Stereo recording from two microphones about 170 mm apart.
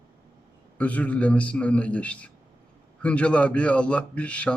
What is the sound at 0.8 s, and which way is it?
Speech, 10° left (ahead or behind).